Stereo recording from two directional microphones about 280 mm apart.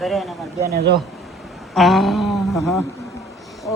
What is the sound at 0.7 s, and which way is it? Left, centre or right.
Speech, right.